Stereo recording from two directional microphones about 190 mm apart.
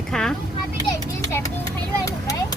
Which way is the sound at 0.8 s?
20° left (ahead or behind).